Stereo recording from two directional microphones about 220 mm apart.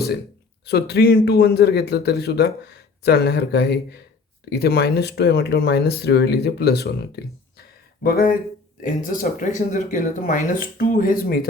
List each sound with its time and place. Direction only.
0.6 s a man's voice: 50° left (ahead or behind)